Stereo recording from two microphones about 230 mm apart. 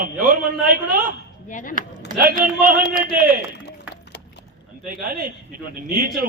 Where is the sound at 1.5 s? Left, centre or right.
Left.